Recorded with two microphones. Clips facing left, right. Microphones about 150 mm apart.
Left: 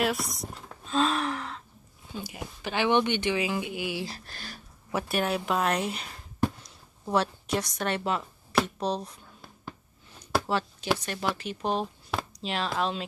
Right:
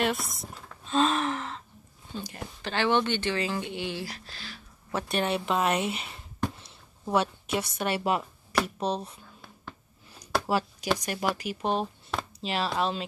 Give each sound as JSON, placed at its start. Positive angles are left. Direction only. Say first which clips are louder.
{"t": 0.0, "sound": "a sound", "louder": "even", "side_deg": 0}
{"t": 2.1, "sound": "speech", "louder": "even", "side_deg": 10}
{"t": 4.3, "sound": "speech", "louder": "left 1 dB", "side_deg": 45}
{"t": 4.9, "sound": "speech", "louder": "even", "side_deg": 5}
{"t": 10.4, "sound": "a sound", "louder": "right 2 dB", "side_deg": -10}
{"t": 11.0, "sound": "speech", "louder": "right 1 dB", "side_deg": -10}